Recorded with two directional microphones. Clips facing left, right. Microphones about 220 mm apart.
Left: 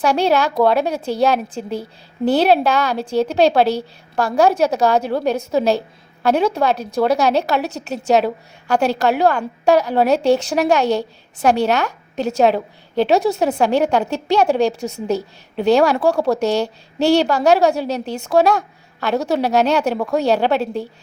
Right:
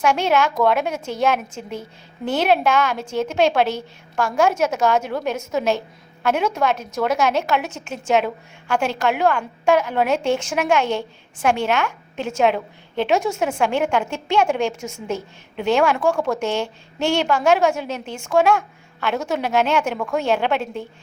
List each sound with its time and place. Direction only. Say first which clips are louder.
0.0 s a woman's voice: left 2 dB; 35° left (ahead or behind)